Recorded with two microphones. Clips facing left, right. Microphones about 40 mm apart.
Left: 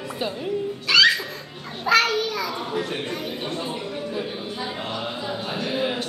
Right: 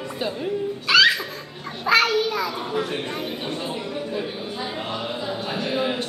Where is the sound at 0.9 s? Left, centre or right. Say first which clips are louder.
Right 1 dB; centre.